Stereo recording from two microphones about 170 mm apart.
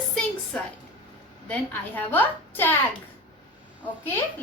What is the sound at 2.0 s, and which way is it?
Speech, 10° left (ahead or behind).